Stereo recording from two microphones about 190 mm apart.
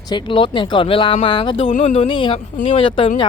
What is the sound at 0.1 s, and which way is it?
Speech, 25° left (ahead or behind).